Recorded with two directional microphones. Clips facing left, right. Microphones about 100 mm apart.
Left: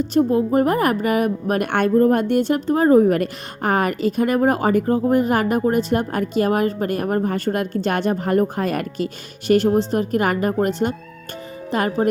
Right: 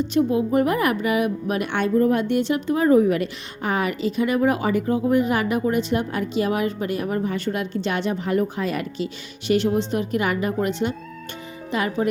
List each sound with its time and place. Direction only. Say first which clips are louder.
0.0 s a woman's voice: left 3 dB; 40° left (ahead or behind)